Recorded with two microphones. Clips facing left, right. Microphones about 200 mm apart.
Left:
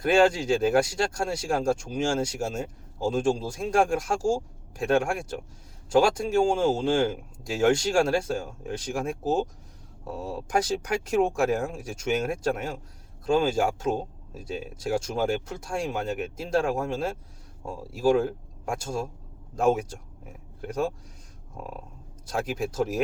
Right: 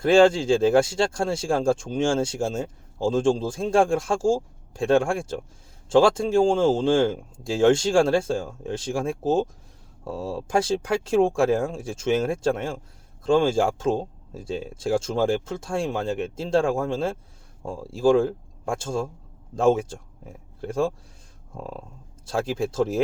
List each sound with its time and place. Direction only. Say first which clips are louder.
0.0 s speech: right 4 dB; 25° right (ahead or behind)
22.3 s speech: right 4 dB; 25° right (ahead or behind)